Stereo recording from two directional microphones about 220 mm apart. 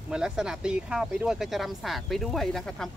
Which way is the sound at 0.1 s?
5° right (ahead or behind).